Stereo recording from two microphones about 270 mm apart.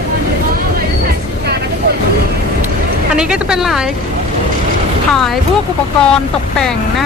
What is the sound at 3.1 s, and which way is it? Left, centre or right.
Speech, centre.